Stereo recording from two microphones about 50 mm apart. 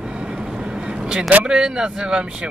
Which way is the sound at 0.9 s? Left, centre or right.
Centre.